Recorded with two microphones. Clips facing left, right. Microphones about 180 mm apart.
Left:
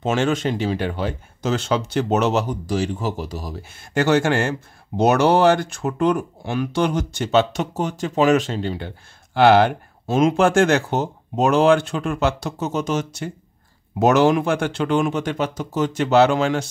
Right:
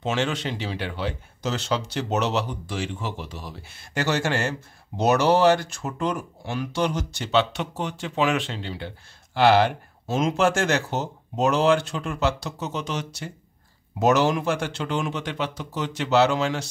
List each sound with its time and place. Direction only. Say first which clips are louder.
0.0 s speech: left 6 dB; 50° left (ahead or behind)